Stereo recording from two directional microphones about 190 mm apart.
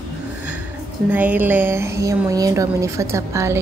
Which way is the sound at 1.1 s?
10° right (ahead or behind).